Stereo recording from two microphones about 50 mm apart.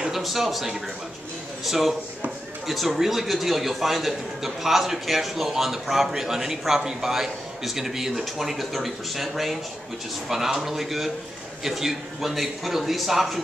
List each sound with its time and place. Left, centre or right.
0.0 s a man's voice: centre